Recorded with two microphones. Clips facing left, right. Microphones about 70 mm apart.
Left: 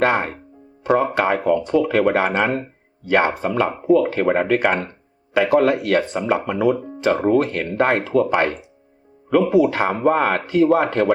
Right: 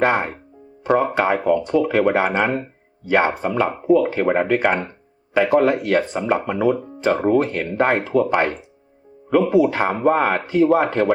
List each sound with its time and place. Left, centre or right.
0.0 s speech: centre
0.9 s speech: centre
4.6 s a sound: centre
5.4 s speech: centre
5.6 s speech: centre
6.4 s speech: centre